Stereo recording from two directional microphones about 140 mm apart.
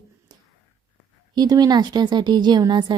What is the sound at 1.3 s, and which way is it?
A woman's voice, 30° right (ahead or behind).